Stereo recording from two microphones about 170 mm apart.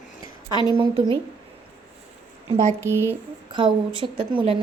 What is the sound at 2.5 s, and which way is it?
Speech, 45° right (ahead or behind).